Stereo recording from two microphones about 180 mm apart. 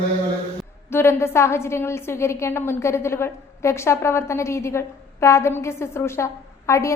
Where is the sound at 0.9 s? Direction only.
15° left (ahead or behind).